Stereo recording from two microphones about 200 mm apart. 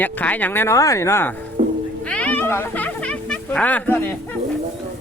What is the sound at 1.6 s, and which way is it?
Music, 40° right (ahead or behind).